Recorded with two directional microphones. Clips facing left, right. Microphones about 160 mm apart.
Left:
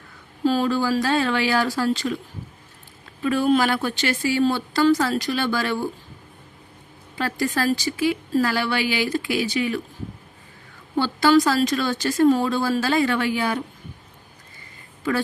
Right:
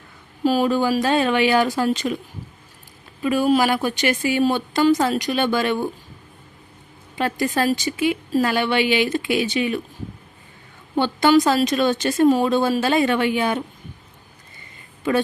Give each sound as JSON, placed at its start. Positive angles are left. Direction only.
{"t": 0.4, "sound": "speech", "side_deg": -15}
{"t": 3.2, "sound": "speech", "side_deg": -10}
{"t": 7.2, "sound": "speech", "side_deg": -20}
{"t": 10.9, "sound": "speech", "side_deg": -20}